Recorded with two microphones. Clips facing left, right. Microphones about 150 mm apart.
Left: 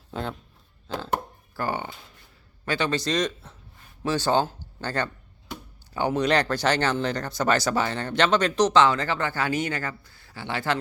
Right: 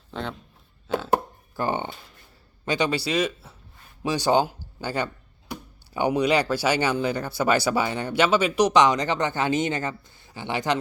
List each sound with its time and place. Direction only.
0.1 s speech: 5° left (ahead or behind)
0.9 s a sound: 5° right (ahead or behind)
1.5 s speech: 20° right (ahead or behind)